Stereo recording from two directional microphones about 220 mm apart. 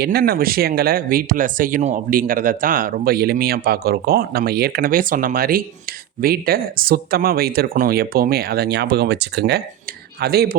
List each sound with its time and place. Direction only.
0.0 s speech: 45° right (ahead or behind)